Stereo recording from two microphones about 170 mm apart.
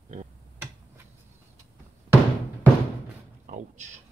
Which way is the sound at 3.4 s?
45° right (ahead or behind).